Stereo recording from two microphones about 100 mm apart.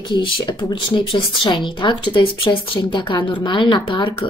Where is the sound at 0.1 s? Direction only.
45° left (ahead or behind).